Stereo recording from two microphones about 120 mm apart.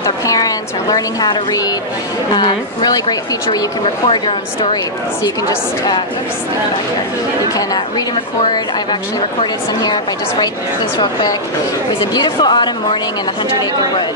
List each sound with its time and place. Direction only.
0.0 s a woman's voice: 30° left (ahead or behind)
3.8 s a woman's voice: 50° left (ahead or behind)
9.4 s a woman's voice: 35° left (ahead or behind)
12.0 s a woman's voice: 35° left (ahead or behind)